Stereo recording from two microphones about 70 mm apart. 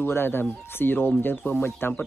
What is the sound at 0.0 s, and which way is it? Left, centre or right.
A man's voice, left.